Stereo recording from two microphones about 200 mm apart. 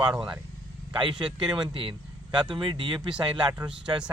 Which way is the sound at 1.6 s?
25° right (ahead or behind).